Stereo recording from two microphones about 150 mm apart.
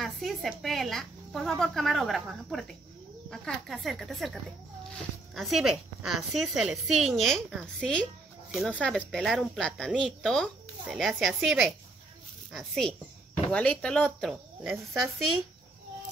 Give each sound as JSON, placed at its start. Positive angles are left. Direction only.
{"t": 0.0, "sound": "speech", "side_deg": 0}
{"t": 14.3, "sound": "speech", "side_deg": -5}